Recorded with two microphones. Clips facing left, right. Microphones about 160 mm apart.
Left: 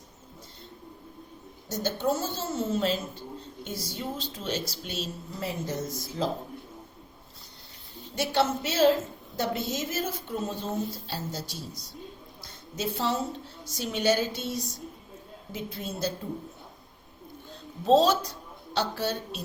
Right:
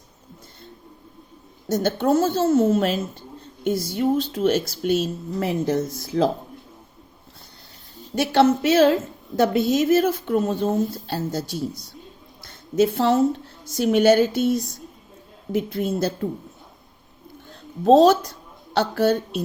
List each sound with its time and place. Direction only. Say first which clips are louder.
1.7 s speech: right 8 dB; 60° right (ahead or behind)
8.1 s speech: right 9 dB; 60° right (ahead or behind)
9.3 s a woman's voice: right 11 dB; 75° right (ahead or behind)
11.1 s speech: right 9 dB; 55° right (ahead or behind)
12.7 s speech: right 11 dB; 55° right (ahead or behind)
17.8 s speech: right 7 dB; 50° right (ahead or behind)